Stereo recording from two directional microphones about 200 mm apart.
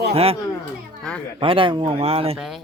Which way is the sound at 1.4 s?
25° right (ahead or behind).